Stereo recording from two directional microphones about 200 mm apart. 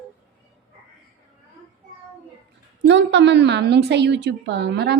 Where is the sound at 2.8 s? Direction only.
60° right (ahead or behind).